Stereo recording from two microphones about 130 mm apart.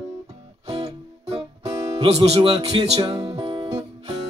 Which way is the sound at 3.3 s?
40° right (ahead or behind).